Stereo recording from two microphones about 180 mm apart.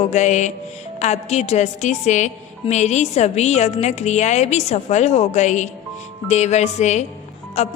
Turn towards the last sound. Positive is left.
turn(degrees=35)  # may be behind; listen again after turning